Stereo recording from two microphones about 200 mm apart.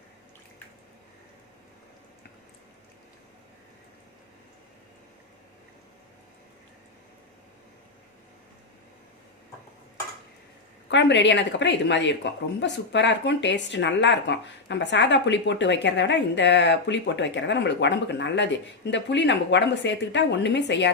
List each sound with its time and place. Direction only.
10.9 s speech: 60° left (ahead or behind)